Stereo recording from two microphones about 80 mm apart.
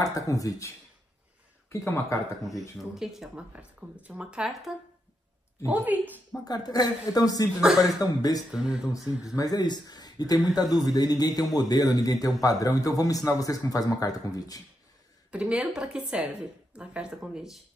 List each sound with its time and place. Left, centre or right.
0.3 s a man's voice: left
1.7 s speech: left
2.8 s speech: centre
3.5 s a woman's voice: centre
5.7 s a woman's voice: right
6.4 s a man's voice: left
7.6 s speech: centre
8.0 s a man's voice: left
8.5 s a woman's voice: centre
9.2 s a man's voice: left
15.3 s a woman's voice: centre